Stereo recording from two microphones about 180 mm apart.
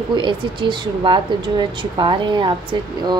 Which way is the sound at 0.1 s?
25° right (ahead or behind).